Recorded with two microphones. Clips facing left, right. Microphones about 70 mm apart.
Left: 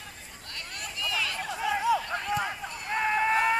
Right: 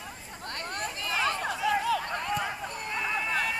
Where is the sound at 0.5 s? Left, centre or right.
Right.